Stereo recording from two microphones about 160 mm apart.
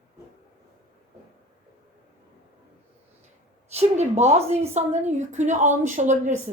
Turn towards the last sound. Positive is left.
turn(degrees=-50)  # may be behind; listen again after turning